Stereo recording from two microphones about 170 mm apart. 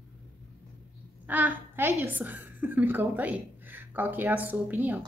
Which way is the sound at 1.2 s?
10° right (ahead or behind).